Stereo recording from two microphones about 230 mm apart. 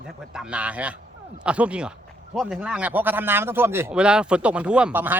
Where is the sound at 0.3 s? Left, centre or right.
Centre.